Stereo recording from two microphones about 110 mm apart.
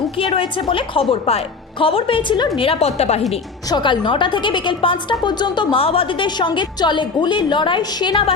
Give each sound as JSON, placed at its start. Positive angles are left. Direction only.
{"t": 0.2, "sound": "a woman's voice", "side_deg": 50}
{"t": 2.6, "sound": "a woman's voice", "side_deg": 60}
{"t": 3.7, "sound": "a woman's voice", "side_deg": 45}
{"t": 5.7, "sound": "a woman's voice", "side_deg": 55}